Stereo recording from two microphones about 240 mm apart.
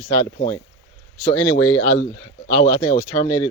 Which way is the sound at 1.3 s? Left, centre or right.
Left.